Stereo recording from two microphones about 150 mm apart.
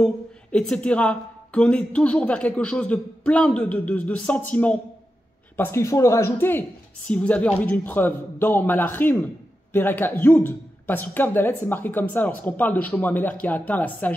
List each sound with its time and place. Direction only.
0.0 s speech: 5° left (ahead or behind)